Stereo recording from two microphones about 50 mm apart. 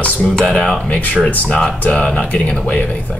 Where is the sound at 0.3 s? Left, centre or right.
Centre.